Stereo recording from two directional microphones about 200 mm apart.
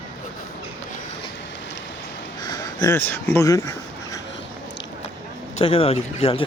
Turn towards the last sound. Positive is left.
turn(degrees=30)  # may be behind; listen again after turning